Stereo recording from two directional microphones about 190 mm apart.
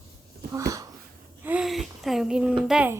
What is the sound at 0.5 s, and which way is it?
Speech, 15° right (ahead or behind).